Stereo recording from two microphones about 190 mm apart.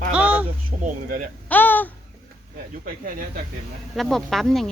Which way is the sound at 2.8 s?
45° right (ahead or behind).